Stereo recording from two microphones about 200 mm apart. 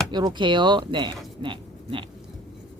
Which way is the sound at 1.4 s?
25° right (ahead or behind).